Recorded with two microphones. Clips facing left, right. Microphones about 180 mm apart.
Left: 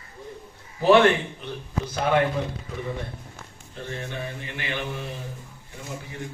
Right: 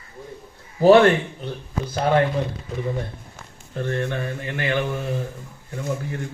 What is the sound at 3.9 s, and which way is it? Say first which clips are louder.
Mantra: right 7 dB; 60° right (ahead or behind).